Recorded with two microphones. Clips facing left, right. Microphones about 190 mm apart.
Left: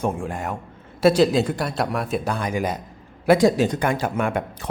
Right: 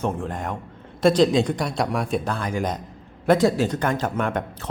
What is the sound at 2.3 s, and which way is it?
A man's voice, 15° left (ahead or behind).